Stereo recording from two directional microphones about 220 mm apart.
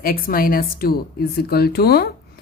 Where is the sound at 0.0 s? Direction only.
40° left (ahead or behind).